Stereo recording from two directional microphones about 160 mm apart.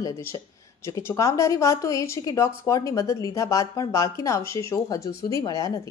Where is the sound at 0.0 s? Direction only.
20° left (ahead or behind).